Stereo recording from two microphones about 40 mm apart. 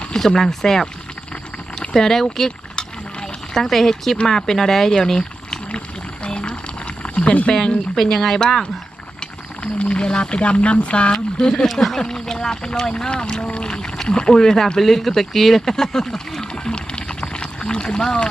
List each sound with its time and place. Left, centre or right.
0.3 s speech: centre
6.2 s a sound: left
7.5 s speech: centre
8.1 s speech: centre
9.7 s speech: left
11.1 s speech: centre
11.6 s speech: centre
11.9 s speech: centre
15.7 s a sound: centre